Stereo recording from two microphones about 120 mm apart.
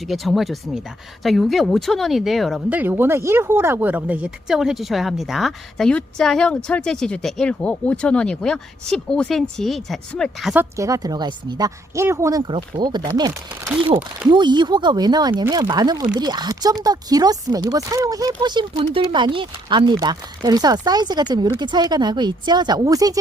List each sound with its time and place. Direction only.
0.1 s speech: centre (ahead or behind)
2.6 s speech: 15° right (ahead or behind); by 10.2 s centre (ahead or behind)
10.8 s speech: 25° right (ahead or behind)
12.4 s speech: 45° right (ahead or behind)
14.3 s speech: 40° right (ahead or behind)